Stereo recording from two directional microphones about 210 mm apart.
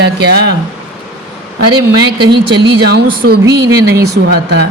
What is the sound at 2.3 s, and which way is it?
Speech, 55° right (ahead or behind).